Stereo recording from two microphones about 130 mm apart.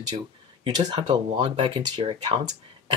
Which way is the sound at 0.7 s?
35° right (ahead or behind).